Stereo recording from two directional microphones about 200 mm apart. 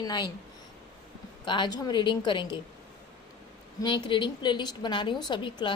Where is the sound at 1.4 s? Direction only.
25° left (ahead or behind).